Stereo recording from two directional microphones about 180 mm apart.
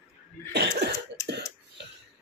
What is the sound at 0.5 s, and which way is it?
Cough, 65° right (ahead or behind).